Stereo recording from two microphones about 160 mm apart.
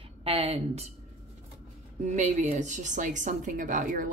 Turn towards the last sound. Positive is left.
turn(degrees=-55)  # may be behind; listen again after turning